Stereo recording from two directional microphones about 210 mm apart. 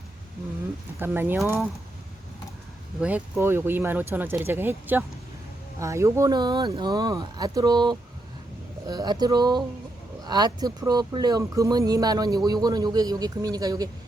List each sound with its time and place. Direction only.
0.9 s speech: 10° right (ahead or behind)
3.0 s speech: 5° right (ahead or behind)